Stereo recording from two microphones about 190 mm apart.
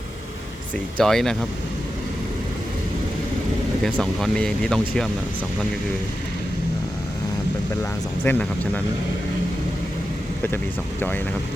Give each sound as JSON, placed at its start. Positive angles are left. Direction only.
{"t": 0.9, "sound": "speech", "side_deg": 5}
{"t": 3.8, "sound": "speech", "side_deg": 0}
{"t": 8.2, "sound": "speech", "side_deg": 10}